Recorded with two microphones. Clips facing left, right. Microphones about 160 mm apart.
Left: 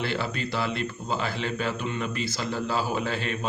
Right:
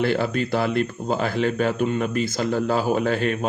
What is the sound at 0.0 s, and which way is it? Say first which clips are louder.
Speech: right 8 dB; 50° right (ahead or behind).